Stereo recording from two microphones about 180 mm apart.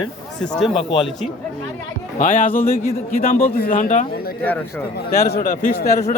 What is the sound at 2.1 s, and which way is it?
Speech, 45° left (ahead or behind).